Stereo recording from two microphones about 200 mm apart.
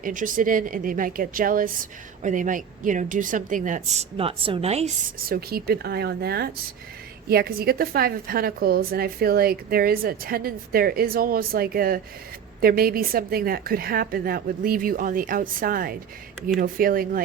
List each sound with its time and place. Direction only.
0.0 s a woman's voice: 40° right (ahead or behind)
5.2 s a woman's voice: 50° right (ahead or behind)